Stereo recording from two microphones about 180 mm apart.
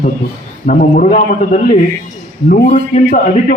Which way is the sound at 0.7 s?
50° left (ahead or behind).